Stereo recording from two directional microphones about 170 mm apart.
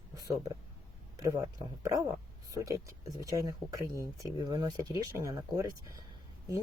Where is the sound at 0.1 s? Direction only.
20° right (ahead or behind).